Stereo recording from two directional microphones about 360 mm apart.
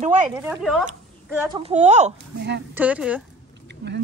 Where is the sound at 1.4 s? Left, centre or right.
Centre.